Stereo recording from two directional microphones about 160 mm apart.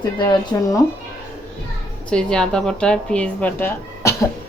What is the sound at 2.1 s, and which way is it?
Speech, 5° left (ahead or behind).